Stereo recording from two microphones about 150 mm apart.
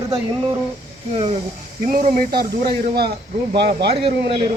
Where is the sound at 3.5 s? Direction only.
35° right (ahead or behind).